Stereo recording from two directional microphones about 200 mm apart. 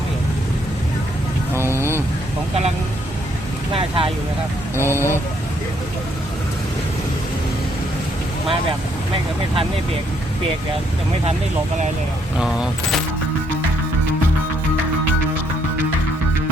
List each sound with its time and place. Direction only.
1.5 s vehicle: 10° right (ahead or behind)
3.8 s speech: 25° right (ahead or behind)
4.8 s speech: 10° right (ahead or behind)
12.4 s speech: 5° right (ahead or behind)